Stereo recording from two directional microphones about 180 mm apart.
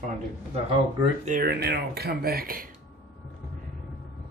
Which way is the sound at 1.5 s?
60° right (ahead or behind).